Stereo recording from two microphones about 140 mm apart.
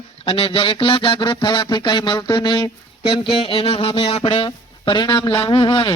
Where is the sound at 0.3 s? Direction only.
45° left (ahead or behind).